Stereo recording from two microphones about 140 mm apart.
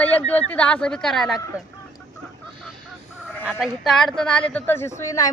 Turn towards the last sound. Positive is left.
turn(degrees=20)  # may be behind; listen again after turning